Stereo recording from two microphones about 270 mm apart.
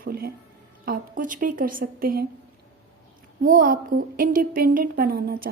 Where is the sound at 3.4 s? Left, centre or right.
Right.